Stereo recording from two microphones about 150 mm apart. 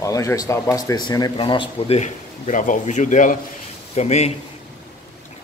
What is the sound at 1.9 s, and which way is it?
Speech, 55° left (ahead or behind).